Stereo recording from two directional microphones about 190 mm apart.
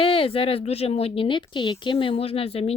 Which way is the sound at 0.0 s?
30° left (ahead or behind).